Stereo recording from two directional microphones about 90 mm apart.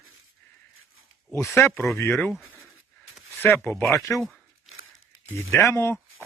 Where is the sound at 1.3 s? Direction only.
30° left (ahead or behind).